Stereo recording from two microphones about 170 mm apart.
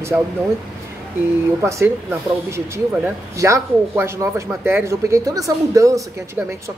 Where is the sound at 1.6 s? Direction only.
15° right (ahead or behind).